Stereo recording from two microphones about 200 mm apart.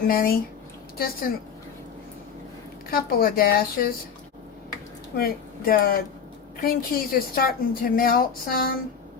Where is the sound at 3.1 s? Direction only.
50° left (ahead or behind).